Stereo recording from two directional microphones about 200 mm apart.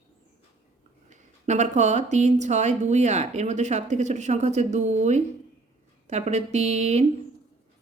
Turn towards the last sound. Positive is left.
turn(degrees=-35)  # may be behind; listen again after turning